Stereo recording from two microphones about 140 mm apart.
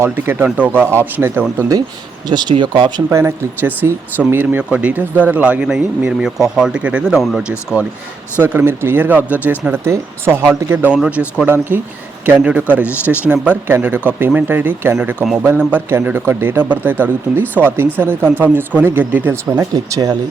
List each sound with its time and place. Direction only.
0.0 s speech: 15° right (ahead or behind)
2.3 s speech: 30° right (ahead or behind)
3.1 s speech: 20° right (ahead or behind)
8.4 s speech: 15° right (ahead or behind)
15.2 s a man's voice: centre (ahead or behind)
15.4 s speech: 15° right (ahead or behind)